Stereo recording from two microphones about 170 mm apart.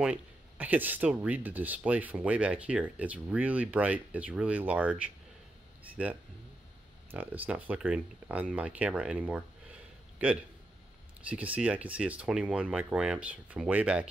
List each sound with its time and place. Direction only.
0.0 s speech: 10° right (ahead or behind)
7.1 s a man's voice: 10° right (ahead or behind)